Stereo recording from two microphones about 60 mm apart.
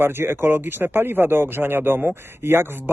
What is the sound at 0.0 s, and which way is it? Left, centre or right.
A man's voice, right.